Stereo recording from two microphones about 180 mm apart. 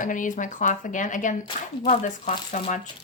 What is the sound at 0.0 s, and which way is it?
A woman's voice, 45° left (ahead or behind).